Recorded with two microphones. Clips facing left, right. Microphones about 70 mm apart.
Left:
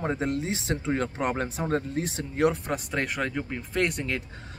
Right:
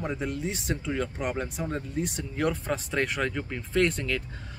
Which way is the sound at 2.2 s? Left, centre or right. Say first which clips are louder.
Left 7 dB; left.